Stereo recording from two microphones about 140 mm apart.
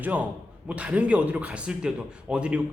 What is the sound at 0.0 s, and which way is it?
Speech, 10° right (ahead or behind).